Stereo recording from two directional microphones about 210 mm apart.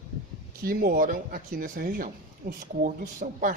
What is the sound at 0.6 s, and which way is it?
Speech, 45° right (ahead or behind).